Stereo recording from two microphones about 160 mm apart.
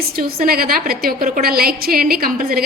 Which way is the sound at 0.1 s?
70° right (ahead or behind).